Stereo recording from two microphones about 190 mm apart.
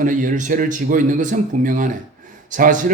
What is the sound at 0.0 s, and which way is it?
A man's voice, 45° right (ahead or behind).